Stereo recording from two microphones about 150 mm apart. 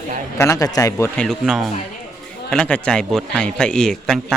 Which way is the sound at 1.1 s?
Centre (ahead or behind).